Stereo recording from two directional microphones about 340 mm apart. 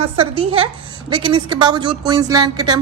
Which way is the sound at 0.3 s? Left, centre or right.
Centre.